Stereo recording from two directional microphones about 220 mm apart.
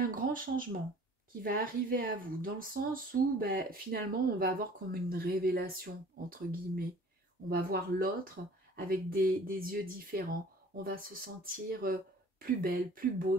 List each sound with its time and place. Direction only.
0.0 s speech: 40° right (ahead or behind)